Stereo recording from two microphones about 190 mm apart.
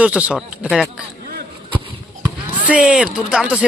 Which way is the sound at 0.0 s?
5° right (ahead or behind).